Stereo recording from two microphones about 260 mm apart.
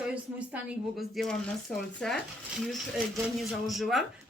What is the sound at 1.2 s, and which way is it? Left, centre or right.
A woman's voice, centre.